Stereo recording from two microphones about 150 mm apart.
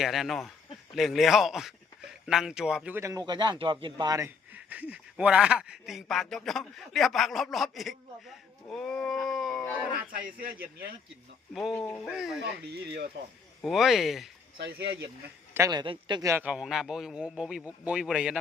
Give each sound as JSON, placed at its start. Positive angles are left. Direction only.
{"t": 0.0, "sound": "speech", "side_deg": 0}
{"t": 3.0, "sound": "speech", "side_deg": -20}
{"t": 4.5, "sound": "speech", "side_deg": -10}
{"t": 10.1, "sound": "a man's voice", "side_deg": -75}
{"t": 11.5, "sound": "speech", "side_deg": 0}
{"t": 12.1, "sound": "speech", "side_deg": -5}
{"t": 13.6, "sound": "speech", "side_deg": 0}
{"t": 15.5, "sound": "speech", "side_deg": -20}
{"t": 15.8, "sound": "speech", "side_deg": -30}
{"t": 16.3, "sound": "a man's voice", "side_deg": -10}